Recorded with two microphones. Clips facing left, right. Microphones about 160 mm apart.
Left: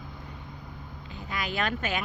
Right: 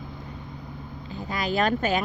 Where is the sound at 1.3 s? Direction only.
35° right (ahead or behind).